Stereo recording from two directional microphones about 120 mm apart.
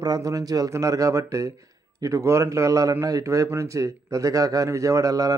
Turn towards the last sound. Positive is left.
turn(degrees=-30)  # may be behind; listen again after turning